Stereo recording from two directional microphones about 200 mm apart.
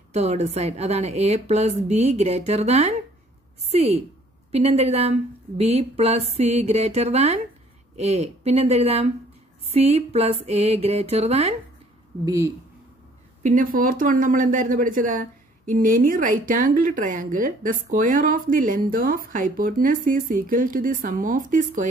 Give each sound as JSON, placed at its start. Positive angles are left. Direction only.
{"t": 0.1, "sound": "speech", "side_deg": -35}
{"t": 12.3, "sound": "speech", "side_deg": -15}
{"t": 13.4, "sound": "speech", "side_deg": -40}